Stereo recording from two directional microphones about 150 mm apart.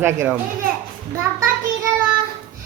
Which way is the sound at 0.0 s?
15° right (ahead or behind).